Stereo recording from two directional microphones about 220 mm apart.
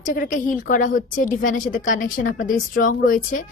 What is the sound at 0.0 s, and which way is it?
A woman's voice, 35° left (ahead or behind).